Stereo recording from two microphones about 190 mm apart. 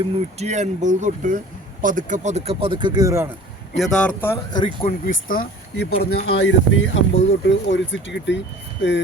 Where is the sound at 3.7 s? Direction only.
Centre (ahead or behind).